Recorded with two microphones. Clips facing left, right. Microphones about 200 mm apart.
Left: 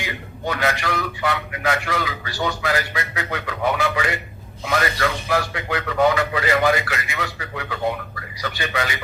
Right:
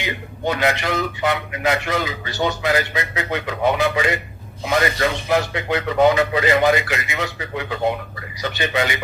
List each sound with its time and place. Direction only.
0.0 s a man's voice: 20° right (ahead or behind)